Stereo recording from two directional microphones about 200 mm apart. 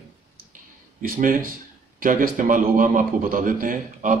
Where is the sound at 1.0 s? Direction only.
45° right (ahead or behind).